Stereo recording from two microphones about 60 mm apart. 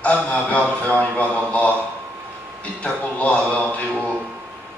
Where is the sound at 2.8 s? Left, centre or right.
Left.